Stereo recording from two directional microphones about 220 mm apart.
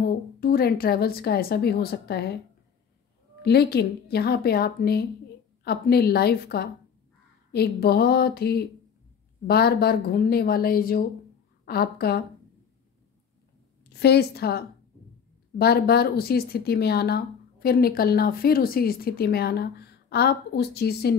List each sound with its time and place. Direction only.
0.0 s speech: 40° left (ahead or behind)
3.4 s speech: 45° left (ahead or behind)
13.8 s a woman's voice: 50° left (ahead or behind)